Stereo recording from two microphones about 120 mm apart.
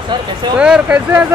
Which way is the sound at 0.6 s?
10° right (ahead or behind).